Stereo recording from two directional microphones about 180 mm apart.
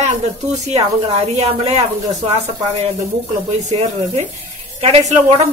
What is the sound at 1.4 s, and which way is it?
Speech, 35° right (ahead or behind).